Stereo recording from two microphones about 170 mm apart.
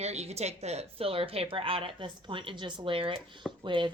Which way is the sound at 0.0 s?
40° right (ahead or behind).